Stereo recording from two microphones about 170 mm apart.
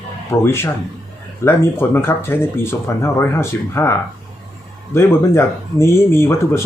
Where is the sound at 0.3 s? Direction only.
15° left (ahead or behind).